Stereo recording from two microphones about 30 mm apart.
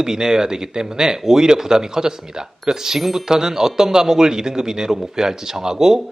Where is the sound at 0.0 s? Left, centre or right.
Right.